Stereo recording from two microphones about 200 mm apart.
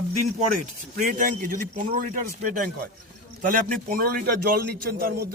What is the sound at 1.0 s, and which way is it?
A man's voice, 45° right (ahead or behind).